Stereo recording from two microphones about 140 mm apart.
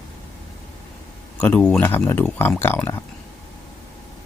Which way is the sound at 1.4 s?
10° left (ahead or behind).